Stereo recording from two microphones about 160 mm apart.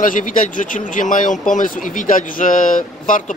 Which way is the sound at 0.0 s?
55° left (ahead or behind).